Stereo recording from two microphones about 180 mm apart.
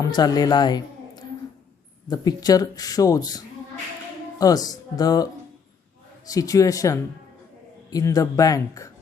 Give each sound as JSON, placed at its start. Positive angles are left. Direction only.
{"t": 0.0, "sound": "a woman's voice", "side_deg": 20}